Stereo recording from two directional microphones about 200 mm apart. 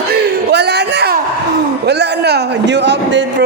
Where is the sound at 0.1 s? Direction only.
55° right (ahead or behind).